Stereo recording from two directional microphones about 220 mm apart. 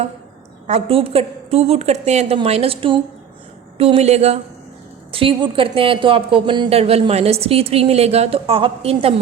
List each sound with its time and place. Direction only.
0.7 s speech: 25° right (ahead or behind)